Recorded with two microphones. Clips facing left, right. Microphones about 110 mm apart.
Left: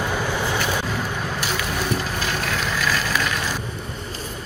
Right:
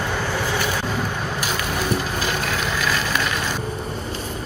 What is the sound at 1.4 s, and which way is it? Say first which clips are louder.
Stir: right 1 dB; centre (ahead or behind).